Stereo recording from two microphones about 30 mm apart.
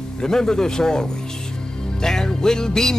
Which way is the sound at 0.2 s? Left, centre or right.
Centre.